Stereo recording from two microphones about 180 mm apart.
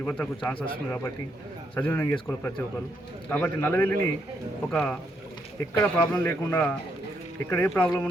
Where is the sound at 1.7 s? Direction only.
10° left (ahead or behind).